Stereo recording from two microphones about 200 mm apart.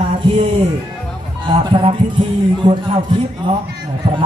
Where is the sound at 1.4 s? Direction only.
25° right (ahead or behind).